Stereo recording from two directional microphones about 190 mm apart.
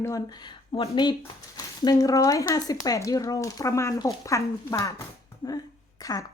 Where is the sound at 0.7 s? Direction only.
30° left (ahead or behind).